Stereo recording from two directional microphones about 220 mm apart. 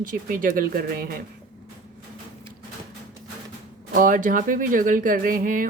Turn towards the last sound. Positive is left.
turn(degrees=-40)  # may be behind; listen again after turning